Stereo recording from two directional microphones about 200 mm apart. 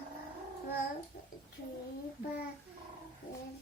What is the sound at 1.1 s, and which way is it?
Speech, 55° left (ahead or behind).